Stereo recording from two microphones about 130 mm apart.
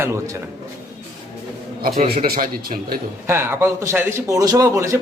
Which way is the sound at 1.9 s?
90° right.